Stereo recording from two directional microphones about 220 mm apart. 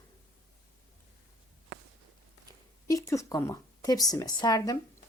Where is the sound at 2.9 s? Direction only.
15° left (ahead or behind).